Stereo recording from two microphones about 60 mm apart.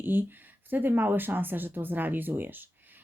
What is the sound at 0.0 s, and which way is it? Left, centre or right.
Speech, right.